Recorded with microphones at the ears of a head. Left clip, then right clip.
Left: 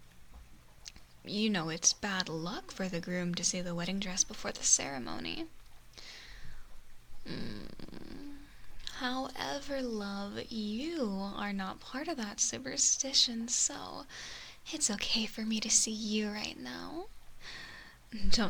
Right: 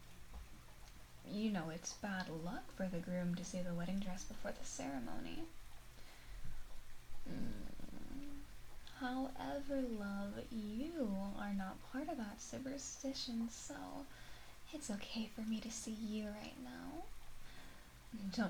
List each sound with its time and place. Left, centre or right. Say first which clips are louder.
0.9 s speech: left 11 dB; left
6.0 s a sound: left 15 dB; left
8.8 s speech: left 8 dB; left